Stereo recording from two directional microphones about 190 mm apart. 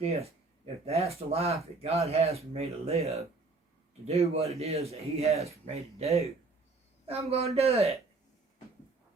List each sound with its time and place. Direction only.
0.0 s a man's voice: 30° right (ahead or behind)